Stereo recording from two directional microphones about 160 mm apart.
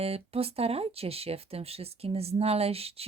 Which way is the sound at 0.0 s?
40° right (ahead or behind).